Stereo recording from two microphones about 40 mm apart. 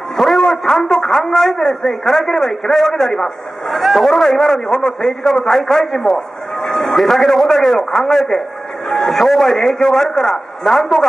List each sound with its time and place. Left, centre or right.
0.2 s a man's voice: centre
3.8 s a man's voice: centre
6.6 s a sound: centre
7.0 s a man's voice: centre
10.7 s a man's voice: centre